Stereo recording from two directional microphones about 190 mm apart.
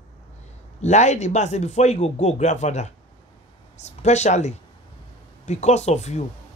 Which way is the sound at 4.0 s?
35° left (ahead or behind).